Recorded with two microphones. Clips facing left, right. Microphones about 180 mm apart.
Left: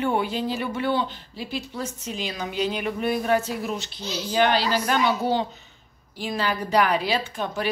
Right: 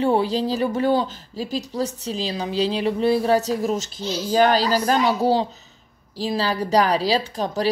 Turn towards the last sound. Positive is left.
turn(degrees=-35)  # may be behind; listen again after turning